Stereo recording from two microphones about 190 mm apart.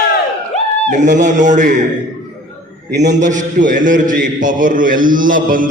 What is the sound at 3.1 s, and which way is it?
A man's voice, 40° right (ahead or behind).